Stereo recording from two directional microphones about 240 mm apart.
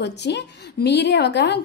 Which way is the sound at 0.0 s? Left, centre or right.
Left.